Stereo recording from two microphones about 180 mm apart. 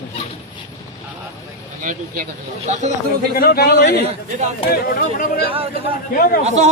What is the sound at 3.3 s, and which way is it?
A man's voice, 60° left (ahead or behind).